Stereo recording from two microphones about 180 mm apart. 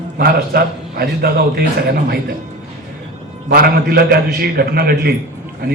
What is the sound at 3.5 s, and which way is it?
A man's voice, 55° right (ahead or behind).